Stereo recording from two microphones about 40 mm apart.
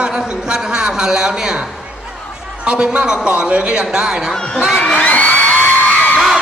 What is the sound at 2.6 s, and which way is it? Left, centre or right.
A man's voice, right.